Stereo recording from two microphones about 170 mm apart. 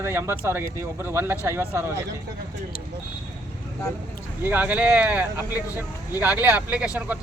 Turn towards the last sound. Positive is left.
turn(degrees=-10)  # may be behind; listen again after turning